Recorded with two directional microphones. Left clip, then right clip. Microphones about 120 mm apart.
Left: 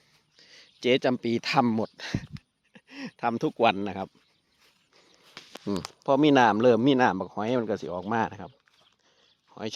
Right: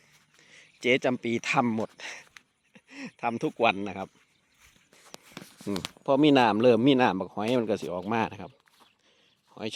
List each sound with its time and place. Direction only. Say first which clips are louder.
0.3 s speech: left 2 dB; 35° left (ahead or behind)
5.7 s speech: left 2 dB; 20° left (ahead or behind)
6.0 s speech: left 1 dB; 10° left (ahead or behind)